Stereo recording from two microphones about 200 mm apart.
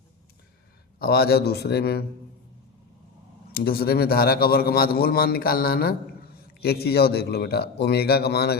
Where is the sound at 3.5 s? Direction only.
50° left (ahead or behind).